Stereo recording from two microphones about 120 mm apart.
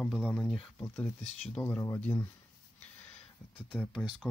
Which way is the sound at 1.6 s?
15° left (ahead or behind).